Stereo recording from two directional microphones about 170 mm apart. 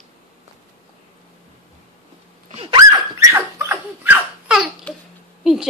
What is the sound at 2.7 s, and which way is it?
Dog, 20° right (ahead or behind).